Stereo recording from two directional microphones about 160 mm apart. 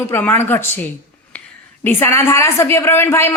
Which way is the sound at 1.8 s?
15° left (ahead or behind).